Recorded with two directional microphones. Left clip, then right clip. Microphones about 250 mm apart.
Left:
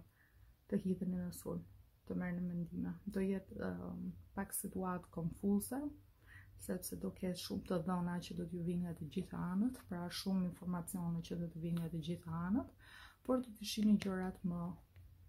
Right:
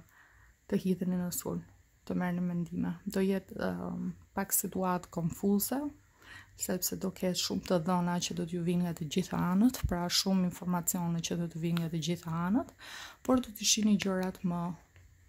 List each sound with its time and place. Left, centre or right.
0.7 s speech: right